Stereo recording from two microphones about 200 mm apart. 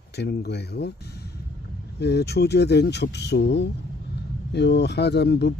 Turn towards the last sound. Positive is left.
turn(degrees=55)  # may be behind; listen again after turning